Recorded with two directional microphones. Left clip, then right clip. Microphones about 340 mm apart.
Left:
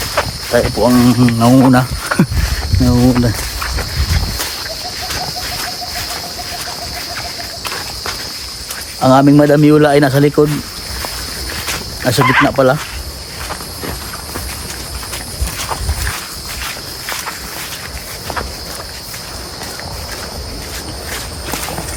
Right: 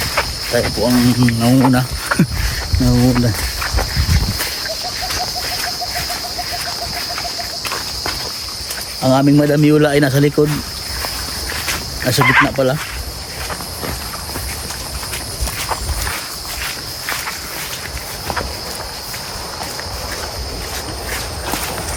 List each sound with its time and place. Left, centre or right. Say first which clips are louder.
0.0 s a sound: left 1 dB; centre
0.8 s speech: left 4 dB; centre
2.9 s cricket: left 3 dB; centre
9.0 s speech: left 5 dB; centre
12.0 s speech: left 1 dB; centre